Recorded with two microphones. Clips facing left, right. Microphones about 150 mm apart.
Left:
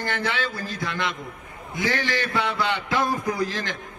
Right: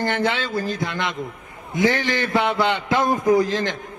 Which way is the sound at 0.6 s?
50° right (ahead or behind).